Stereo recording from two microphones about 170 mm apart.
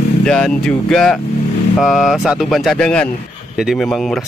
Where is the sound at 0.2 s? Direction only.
5° left (ahead or behind).